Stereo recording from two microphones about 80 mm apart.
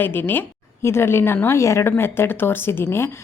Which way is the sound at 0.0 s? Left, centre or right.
Left.